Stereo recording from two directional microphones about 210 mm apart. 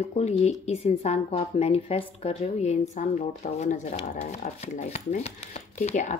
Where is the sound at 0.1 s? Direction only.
30° left (ahead or behind).